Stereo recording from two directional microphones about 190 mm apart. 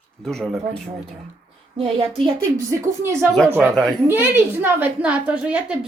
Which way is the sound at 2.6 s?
15° right (ahead or behind).